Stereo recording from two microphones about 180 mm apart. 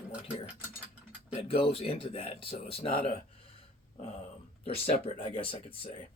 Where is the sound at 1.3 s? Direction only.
30° left (ahead or behind).